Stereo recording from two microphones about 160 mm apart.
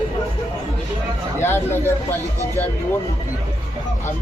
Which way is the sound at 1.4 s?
15° left (ahead or behind).